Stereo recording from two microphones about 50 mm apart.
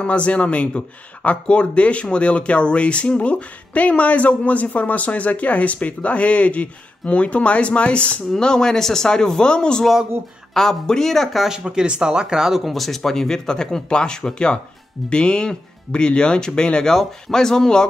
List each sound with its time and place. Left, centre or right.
0.0 s speech: left; by 11.4 s centre
11.4 s speech: centre